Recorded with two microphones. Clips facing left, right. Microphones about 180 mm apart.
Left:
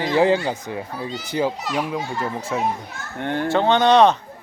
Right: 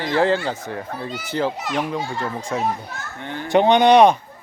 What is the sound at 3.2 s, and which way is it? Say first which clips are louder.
Speech: left 8 dB; 60° left (ahead or behind).